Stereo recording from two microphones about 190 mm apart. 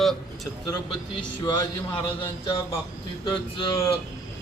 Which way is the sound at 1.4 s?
20° left (ahead or behind).